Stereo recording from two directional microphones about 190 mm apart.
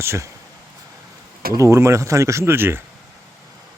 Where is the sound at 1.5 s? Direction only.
15° right (ahead or behind).